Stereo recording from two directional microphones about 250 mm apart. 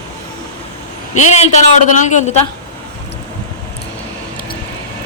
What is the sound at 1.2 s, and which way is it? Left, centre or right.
A man's voice, left.